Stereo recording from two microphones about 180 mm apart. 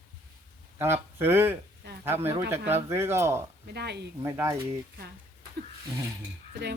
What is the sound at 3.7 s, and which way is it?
Speech, 65° right (ahead or behind).